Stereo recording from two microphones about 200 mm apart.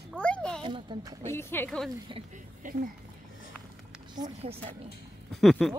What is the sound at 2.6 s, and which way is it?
Speech, 40° right (ahead or behind).